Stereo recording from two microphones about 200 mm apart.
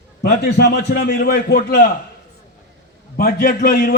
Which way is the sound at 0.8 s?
45° left (ahead or behind).